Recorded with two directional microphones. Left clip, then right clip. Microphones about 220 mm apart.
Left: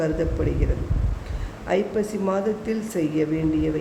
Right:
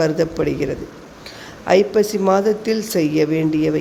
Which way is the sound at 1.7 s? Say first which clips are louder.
Right 9 dB; 30° right (ahead or behind).